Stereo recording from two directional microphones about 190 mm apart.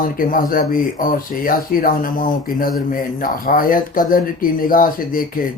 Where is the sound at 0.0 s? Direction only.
45° left (ahead or behind).